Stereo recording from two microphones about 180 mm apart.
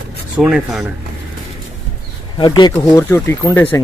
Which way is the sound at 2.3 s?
25° left (ahead or behind).